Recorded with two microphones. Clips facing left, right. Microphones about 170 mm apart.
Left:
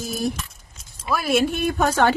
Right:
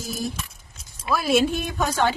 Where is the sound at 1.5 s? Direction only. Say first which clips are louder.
Left 4 dB; 55° left (ahead or behind).